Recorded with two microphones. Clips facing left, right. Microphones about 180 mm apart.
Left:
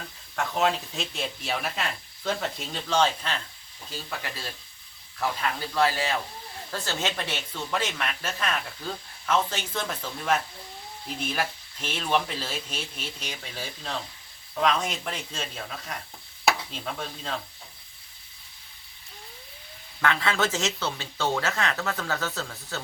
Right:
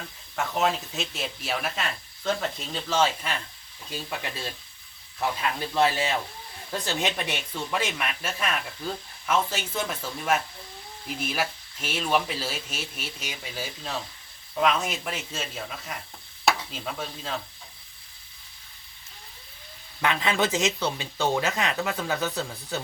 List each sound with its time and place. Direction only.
0.3 s speech: centre (ahead or behind)
3.9 s speech: 20° right (ahead or behind)
5.5 s speech: 20° right (ahead or behind); by 17.4 s 5° right (ahead or behind)
20.0 s speech: 15° right (ahead or behind)